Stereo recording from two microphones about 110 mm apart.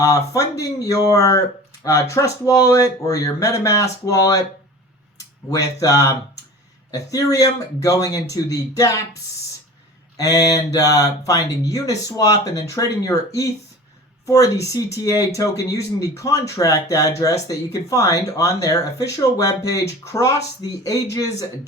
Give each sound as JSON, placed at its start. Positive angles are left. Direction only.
{"t": 0.0, "sound": "speech", "side_deg": 30}
{"t": 5.5, "sound": "speech", "side_deg": 30}
{"t": 10.2, "sound": "speech", "side_deg": 30}